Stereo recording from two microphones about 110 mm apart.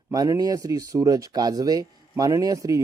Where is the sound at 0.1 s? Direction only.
30° right (ahead or behind).